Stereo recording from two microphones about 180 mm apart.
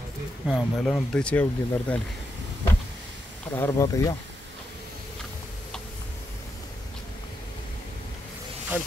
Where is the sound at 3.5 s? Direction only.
15° left (ahead or behind).